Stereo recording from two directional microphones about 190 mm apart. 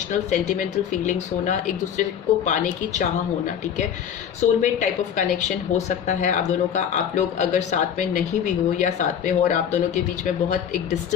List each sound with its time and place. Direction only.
0.1 s a woman's voice: 40° left (ahead or behind)
2.0 s a woman's voice: 40° left (ahead or behind)